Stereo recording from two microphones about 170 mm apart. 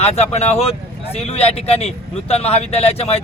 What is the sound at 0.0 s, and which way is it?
Speech, 40° left (ahead or behind).